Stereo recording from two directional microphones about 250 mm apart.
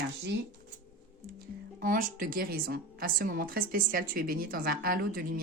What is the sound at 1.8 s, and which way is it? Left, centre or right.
A woman's voice, right.